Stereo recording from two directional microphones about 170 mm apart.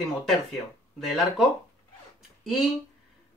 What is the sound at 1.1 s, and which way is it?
Speech, centre (ahead or behind).